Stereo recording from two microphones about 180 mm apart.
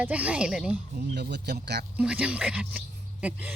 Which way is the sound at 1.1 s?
70° right (ahead or behind).